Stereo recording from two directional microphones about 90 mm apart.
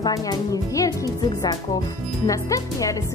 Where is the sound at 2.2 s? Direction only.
40° left (ahead or behind).